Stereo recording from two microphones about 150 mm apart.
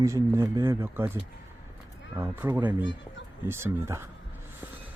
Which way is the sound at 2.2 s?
15° right (ahead or behind).